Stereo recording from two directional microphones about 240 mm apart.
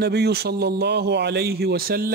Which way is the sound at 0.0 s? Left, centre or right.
Right.